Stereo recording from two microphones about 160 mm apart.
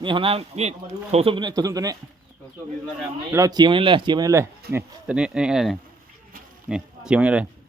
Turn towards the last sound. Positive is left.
turn(degrees=-5)  # may be behind; listen again after turning